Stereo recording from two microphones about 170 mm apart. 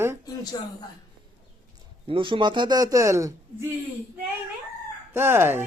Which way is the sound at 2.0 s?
30° right (ahead or behind).